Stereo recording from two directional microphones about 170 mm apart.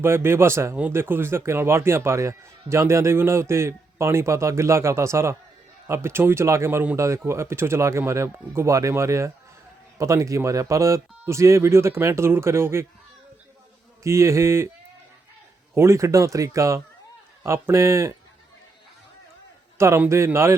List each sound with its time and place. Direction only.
0.0 s speech: 15° right (ahead or behind)
14.0 s speech: 15° right (ahead or behind)
15.7 s speech: 15° right (ahead or behind)
19.8 s speech: 15° right (ahead or behind)